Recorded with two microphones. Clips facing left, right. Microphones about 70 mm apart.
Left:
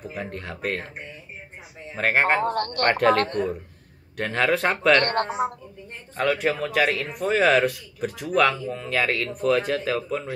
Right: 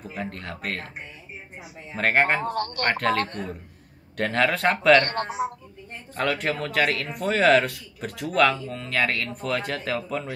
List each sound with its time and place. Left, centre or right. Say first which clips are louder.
0.0 s speech: left 1 dB; centre
1.9 s speech: left 1 dB; centre
2.4 s speech: left 3 dB; left
2.9 s speech: left 5 dB; centre
4.2 s speech: even; centre
6.1 s speech: left 2 dB; centre